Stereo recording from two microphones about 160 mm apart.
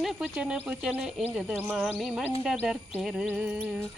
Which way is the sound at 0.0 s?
Centre (ahead or behind).